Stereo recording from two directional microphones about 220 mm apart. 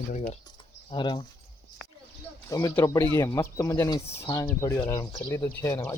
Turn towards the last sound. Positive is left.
turn(degrees=15)  # may be behind; listen again after turning